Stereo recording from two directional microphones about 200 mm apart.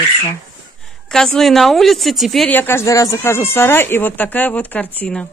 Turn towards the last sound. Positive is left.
turn(degrees=5)  # may be behind; listen again after turning